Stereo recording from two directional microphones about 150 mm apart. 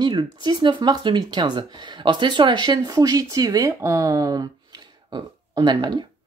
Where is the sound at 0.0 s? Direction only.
30° right (ahead or behind).